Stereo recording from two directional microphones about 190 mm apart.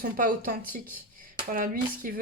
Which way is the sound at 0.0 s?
50° right (ahead or behind).